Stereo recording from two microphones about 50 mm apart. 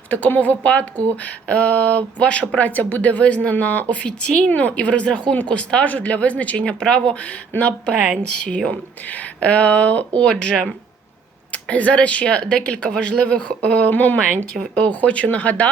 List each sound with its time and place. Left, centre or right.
0.1 s speech: left